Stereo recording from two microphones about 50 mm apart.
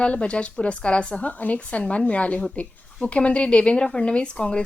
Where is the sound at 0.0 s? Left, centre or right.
Left.